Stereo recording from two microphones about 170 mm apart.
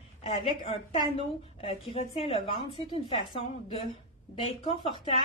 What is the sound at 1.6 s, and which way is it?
A woman's voice, 40° left (ahead or behind).